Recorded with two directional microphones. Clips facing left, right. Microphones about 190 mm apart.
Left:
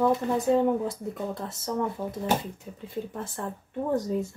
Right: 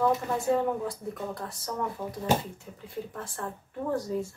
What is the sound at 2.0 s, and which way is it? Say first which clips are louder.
Speech: even; 10° left (ahead or behind).